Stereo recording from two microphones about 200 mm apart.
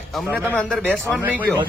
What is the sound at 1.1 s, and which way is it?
Speech, 10° right (ahead or behind).